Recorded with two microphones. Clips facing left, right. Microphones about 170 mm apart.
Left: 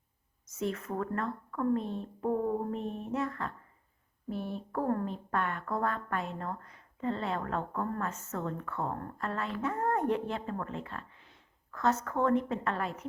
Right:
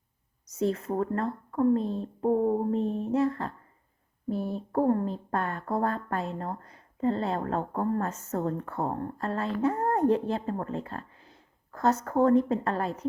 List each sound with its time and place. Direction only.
0.4 s speech: 35° right (ahead or behind)